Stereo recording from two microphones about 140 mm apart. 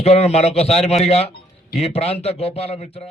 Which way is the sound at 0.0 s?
50° left (ahead or behind).